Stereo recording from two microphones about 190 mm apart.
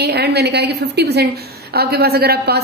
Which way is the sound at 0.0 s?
60° right (ahead or behind).